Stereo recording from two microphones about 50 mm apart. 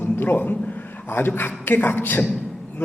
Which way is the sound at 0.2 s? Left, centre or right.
Left.